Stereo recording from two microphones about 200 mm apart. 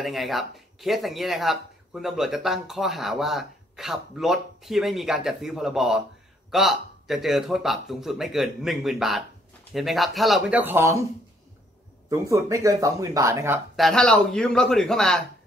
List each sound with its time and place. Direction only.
0.0 s speech: centre (ahead or behind)
12.1 s speech: 15° right (ahead or behind)
13.7 s speech: centre (ahead or behind)